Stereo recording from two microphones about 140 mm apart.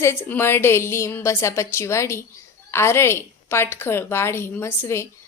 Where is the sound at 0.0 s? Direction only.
15° left (ahead or behind).